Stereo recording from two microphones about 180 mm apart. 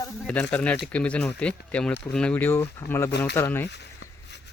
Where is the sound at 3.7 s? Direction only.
70° left (ahead or behind).